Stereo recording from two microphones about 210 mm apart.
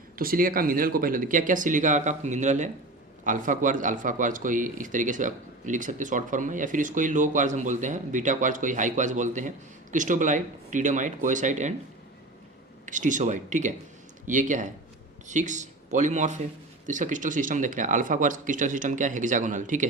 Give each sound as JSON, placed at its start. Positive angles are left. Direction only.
{"t": 0.2, "sound": "speech", "side_deg": -45}
{"t": 12.8, "sound": "speech", "side_deg": -35}